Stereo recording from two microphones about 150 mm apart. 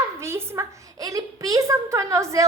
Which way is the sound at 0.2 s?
20° right (ahead or behind).